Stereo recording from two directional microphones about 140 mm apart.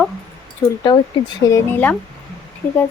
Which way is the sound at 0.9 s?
30° left (ahead or behind).